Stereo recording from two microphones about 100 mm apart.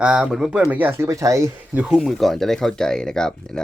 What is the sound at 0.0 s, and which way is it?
Speech, 5° right (ahead or behind).